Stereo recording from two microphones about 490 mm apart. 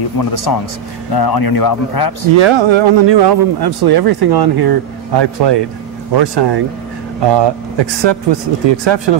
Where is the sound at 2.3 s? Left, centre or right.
Right.